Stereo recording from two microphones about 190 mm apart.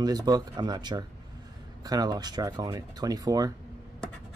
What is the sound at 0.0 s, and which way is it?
Speech, 20° right (ahead or behind).